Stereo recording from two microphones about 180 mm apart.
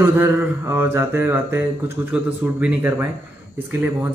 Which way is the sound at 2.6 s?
15° right (ahead or behind).